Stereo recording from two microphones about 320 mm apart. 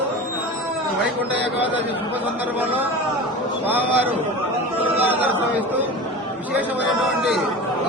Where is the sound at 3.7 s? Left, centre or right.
Centre.